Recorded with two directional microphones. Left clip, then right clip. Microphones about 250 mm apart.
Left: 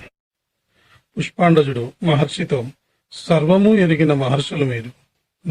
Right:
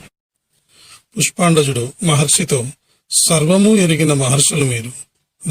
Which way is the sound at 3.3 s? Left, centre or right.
Right.